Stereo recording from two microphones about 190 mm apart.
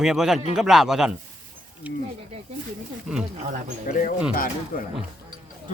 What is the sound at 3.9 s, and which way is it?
Speech, 45° left (ahead or behind).